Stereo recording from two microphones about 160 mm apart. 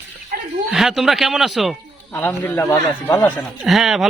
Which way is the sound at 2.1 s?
10° left (ahead or behind).